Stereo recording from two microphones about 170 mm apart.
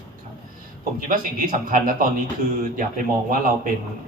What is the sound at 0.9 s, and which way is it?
A man's voice, 55° right (ahead or behind).